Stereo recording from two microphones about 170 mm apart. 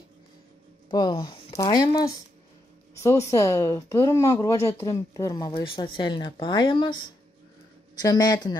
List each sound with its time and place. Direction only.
0.8 s speech: 25° left (ahead or behind)
8.0 s speech: 25° left (ahead or behind)